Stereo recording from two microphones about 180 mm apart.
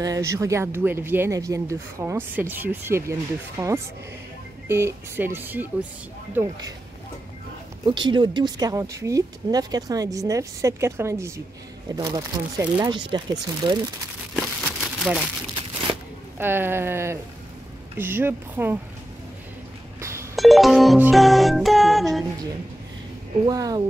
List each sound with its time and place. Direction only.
0.0 s speech: 20° right (ahead or behind)
7.8 s speech: 25° right (ahead or behind)
15.1 s speech: 5° right (ahead or behind)
16.3 s speech: 10° right (ahead or behind)
20.0 s telephone dialing: 15° right (ahead or behind)
20.3 s music: centre (ahead or behind)
23.4 s speech: 20° right (ahead or behind)